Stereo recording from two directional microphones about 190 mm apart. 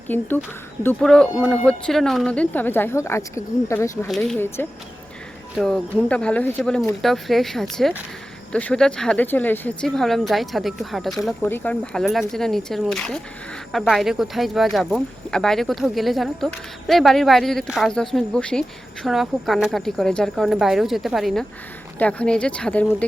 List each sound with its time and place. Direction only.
0.1 s speech: 10° left (ahead or behind)
4.1 s speech: centre (ahead or behind)